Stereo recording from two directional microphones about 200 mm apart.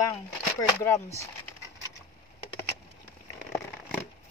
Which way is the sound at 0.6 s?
15° left (ahead or behind).